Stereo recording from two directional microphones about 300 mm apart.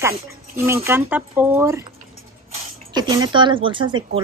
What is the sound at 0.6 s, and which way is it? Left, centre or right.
Speech, centre.